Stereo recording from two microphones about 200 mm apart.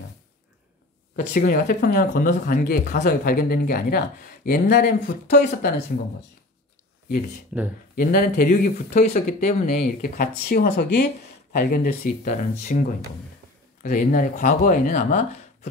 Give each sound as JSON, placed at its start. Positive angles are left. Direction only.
{"t": 1.1, "sound": "speech", "side_deg": 45}
{"t": 7.5, "sound": "speech", "side_deg": -5}
{"t": 7.9, "sound": "speech", "side_deg": 45}
{"t": 13.8, "sound": "speech", "side_deg": 40}